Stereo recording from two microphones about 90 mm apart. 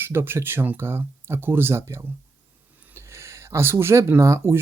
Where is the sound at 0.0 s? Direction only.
25° right (ahead or behind).